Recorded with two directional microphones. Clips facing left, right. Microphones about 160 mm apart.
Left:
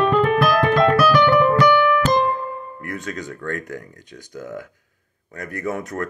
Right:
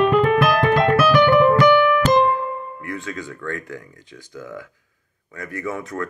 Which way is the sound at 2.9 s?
45° left (ahead or behind).